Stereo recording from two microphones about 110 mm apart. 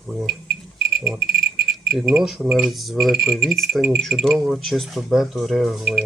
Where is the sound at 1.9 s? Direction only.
25° right (ahead or behind).